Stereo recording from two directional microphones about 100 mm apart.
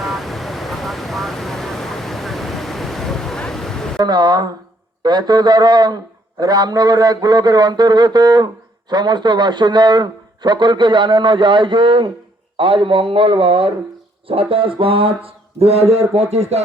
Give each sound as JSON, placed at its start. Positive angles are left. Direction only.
{"t": 0.0, "sound": "vehicle", "side_deg": 0}
{"t": 3.9, "sound": "a man's voice", "side_deg": -45}
{"t": 14.3, "sound": "a sound", "side_deg": -65}